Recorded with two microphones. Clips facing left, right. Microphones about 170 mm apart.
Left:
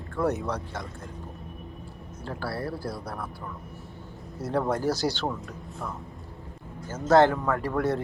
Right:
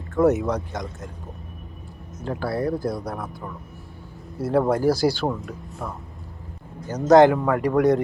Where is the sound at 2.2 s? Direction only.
20° right (ahead or behind).